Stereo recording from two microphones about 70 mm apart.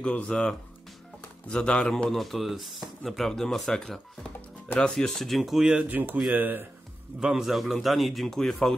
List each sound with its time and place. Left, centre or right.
0.0 s speech: centre
5.9 s speech: right
7.2 s speech: centre